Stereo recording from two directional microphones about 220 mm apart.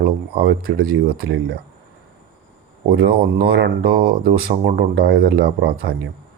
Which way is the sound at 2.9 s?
45° right (ahead or behind).